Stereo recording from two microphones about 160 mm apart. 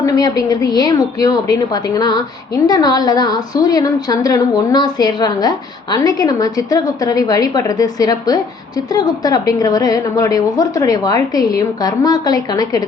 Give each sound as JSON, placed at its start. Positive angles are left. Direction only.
{"t": 0.0, "sound": "a woman's voice", "side_deg": 20}